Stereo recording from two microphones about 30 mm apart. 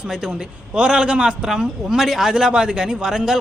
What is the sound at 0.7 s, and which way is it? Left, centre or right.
Speech, right.